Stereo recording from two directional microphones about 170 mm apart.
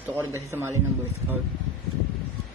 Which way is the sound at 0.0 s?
15° right (ahead or behind).